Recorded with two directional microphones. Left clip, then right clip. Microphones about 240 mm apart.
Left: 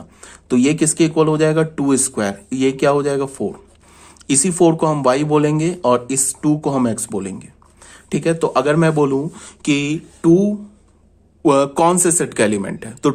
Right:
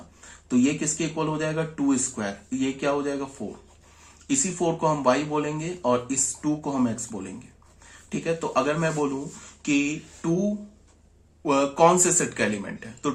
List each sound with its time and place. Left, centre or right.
0.4 s speech: left
11.4 s speech: left